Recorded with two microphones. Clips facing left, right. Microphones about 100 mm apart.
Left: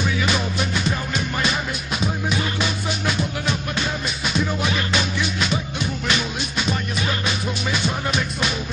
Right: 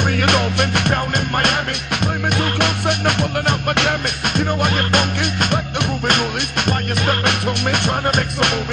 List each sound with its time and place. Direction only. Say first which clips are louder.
0.0 s music: right 5 dB; 60° right (ahead or behind)
2.0 s music: right 4 dB; 60° right (ahead or behind)